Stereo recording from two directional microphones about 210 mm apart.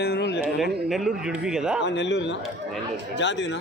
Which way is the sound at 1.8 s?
55° left (ahead or behind).